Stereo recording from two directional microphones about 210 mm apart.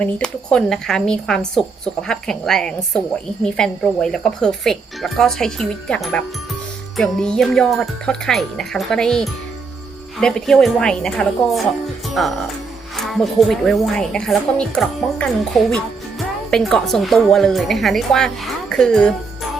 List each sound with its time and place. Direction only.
0.0 s speech: 5° left (ahead or behind)